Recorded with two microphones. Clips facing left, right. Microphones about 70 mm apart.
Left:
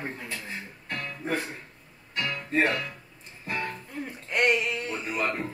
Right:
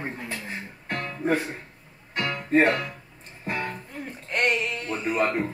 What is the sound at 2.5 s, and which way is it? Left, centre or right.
Speech, right.